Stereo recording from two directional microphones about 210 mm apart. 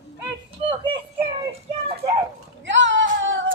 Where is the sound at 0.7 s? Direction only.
25° right (ahead or behind).